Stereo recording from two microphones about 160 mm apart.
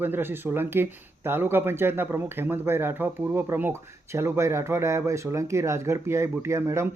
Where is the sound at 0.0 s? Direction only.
15° right (ahead or behind).